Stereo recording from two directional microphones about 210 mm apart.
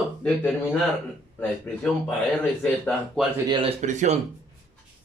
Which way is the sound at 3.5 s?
25° right (ahead or behind).